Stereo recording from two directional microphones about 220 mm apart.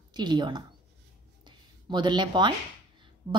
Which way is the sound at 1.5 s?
20° right (ahead or behind).